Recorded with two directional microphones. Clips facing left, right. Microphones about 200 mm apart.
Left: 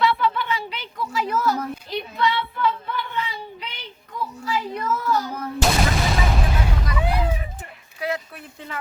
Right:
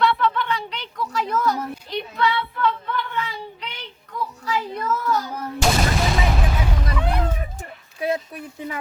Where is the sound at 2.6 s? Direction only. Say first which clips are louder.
Right 1 dB; 5° left (ahead or behind).